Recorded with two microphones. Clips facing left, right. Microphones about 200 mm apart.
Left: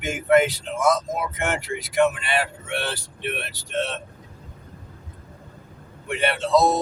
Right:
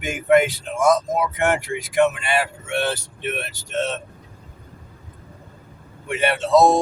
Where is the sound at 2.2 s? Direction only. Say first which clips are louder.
Right 3 dB; 45° right (ahead or behind).